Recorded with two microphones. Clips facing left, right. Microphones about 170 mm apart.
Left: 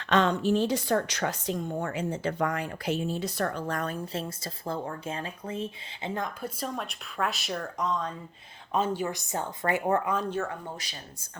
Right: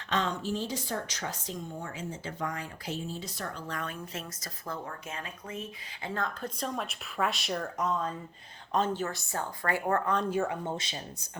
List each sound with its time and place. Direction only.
0.0 s speech: 65° left (ahead or behind); by 6.5 s 15° left (ahead or behind)
6.6 s speech: centre (ahead or behind)
8.7 s a woman's voice: 10° left (ahead or behind)
10.2 s speech: 15° right (ahead or behind)